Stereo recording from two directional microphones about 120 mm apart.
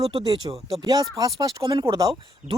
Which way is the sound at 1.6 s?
40° right (ahead or behind).